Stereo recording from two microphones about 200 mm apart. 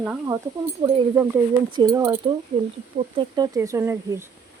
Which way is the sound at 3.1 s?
20° right (ahead or behind).